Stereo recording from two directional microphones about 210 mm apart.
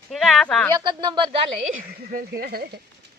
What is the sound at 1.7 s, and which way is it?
Speech, 45° right (ahead or behind).